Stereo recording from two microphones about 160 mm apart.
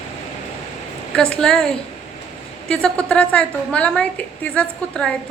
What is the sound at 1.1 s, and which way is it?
A woman's voice, 5° left (ahead or behind).